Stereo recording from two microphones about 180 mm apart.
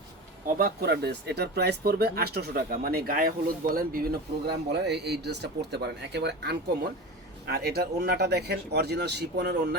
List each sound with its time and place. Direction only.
0.4 s speech: 60° right (ahead or behind)